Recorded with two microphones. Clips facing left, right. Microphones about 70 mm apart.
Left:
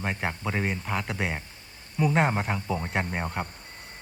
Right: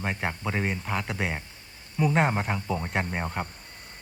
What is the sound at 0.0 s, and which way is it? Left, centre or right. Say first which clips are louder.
A man's voice: even; centre.